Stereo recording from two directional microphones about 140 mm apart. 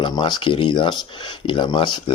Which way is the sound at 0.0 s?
30° left (ahead or behind).